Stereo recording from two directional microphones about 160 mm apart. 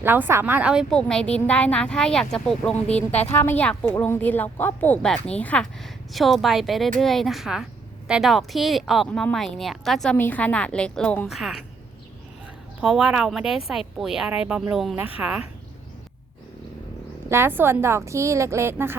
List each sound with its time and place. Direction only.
0.0 s a woman's voice: 15° right (ahead or behind)
12.8 s a woman's voice: 5° right (ahead or behind)
17.2 s a woman's voice: 15° right (ahead or behind)